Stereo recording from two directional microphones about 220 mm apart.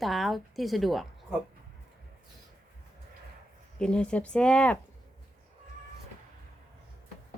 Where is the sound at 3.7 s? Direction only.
5° left (ahead or behind).